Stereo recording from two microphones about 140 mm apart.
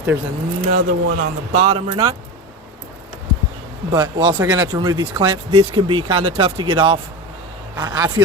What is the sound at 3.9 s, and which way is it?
Speech, 30° right (ahead or behind).